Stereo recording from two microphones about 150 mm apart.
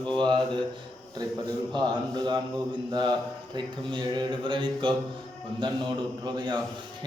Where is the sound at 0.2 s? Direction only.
30° right (ahead or behind).